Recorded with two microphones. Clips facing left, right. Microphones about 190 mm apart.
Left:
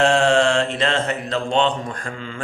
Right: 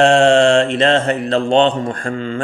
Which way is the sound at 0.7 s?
60° right (ahead or behind).